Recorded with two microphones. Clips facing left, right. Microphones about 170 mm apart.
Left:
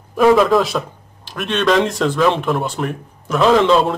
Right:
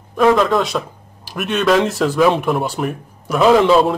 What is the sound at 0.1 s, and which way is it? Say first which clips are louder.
Speech: left 2 dB; 5° left (ahead or behind).